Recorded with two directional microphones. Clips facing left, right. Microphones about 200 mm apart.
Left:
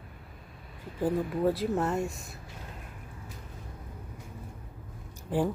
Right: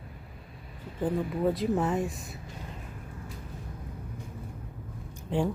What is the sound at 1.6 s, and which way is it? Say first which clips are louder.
Speech: right 1 dB; centre (ahead or behind).